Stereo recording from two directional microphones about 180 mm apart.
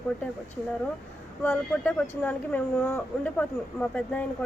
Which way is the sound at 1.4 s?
10° left (ahead or behind).